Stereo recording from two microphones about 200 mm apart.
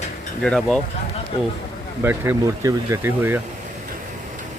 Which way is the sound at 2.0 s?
10° right (ahead or behind).